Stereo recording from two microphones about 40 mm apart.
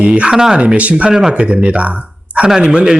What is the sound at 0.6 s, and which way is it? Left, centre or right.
Speech, right.